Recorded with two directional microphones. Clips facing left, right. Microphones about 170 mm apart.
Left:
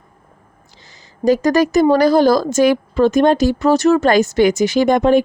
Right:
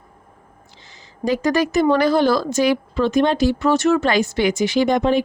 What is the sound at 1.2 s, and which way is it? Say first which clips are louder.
Speech: left 5 dB; 40° left (ahead or behind).